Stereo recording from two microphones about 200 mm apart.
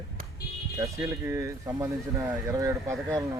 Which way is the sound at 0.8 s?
15° right (ahead or behind).